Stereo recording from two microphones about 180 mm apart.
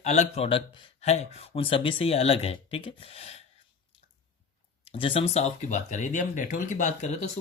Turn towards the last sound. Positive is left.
turn(degrees=40)  # may be behind; listen again after turning